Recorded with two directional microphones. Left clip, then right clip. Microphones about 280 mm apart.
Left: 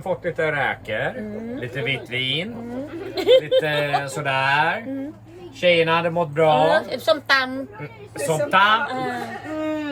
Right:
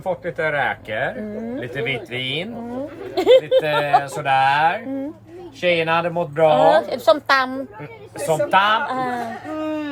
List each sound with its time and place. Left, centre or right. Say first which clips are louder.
0.0 s speech: even; centre; by 3.6 s right
3.6 s speech: right 4 dB; centre
6.5 s speech: right 4 dB; right
8.2 s speech: right 1 dB; centre
8.9 s speech: right 3 dB; right
9.5 s a sound: left 1 dB; centre